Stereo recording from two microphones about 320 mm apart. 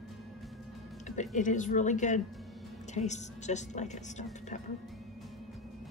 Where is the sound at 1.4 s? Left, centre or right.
Left.